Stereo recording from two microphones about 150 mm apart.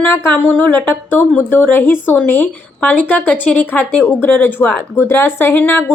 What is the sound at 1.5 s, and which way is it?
A woman's voice, 15° left (ahead or behind).